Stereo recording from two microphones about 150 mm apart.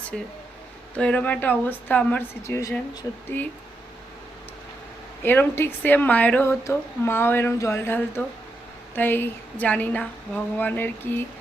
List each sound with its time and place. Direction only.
0.1 s a woman's voice: 5° left (ahead or behind)
5.2 s a woman's voice: 15° left (ahead or behind)